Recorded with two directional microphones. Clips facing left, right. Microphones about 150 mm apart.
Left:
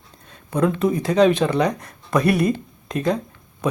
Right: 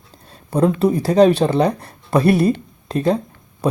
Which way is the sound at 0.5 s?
35° right (ahead or behind).